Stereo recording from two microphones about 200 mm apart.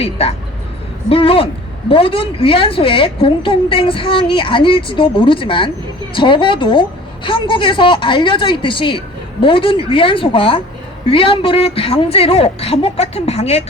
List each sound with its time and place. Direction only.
0.0 s a woman's voice: 30° left (ahead or behind)